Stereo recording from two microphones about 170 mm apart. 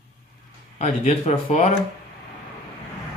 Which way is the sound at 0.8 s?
40° left (ahead or behind).